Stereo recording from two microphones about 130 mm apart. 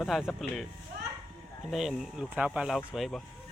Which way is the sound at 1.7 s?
Centre (ahead or behind).